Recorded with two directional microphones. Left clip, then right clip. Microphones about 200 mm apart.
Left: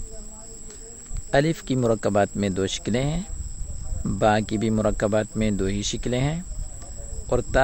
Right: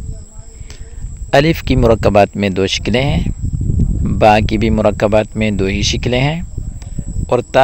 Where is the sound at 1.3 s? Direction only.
35° right (ahead or behind).